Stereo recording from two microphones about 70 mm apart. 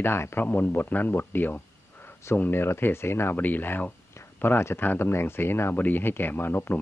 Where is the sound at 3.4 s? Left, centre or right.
Left.